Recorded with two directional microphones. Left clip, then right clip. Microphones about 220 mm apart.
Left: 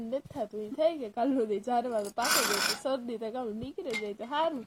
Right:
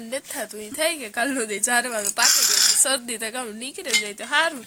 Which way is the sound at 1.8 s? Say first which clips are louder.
Right 5 dB; 25° right (ahead or behind).